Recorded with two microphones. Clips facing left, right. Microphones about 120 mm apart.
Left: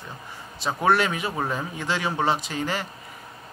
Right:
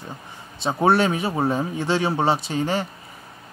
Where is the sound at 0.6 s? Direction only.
30° right (ahead or behind).